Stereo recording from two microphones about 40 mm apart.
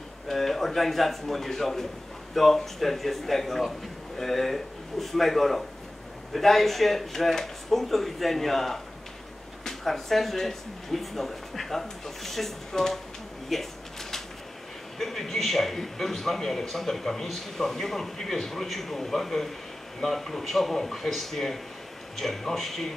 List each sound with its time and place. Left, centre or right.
0.3 s a man's voice: centre
15.0 s a man's voice: centre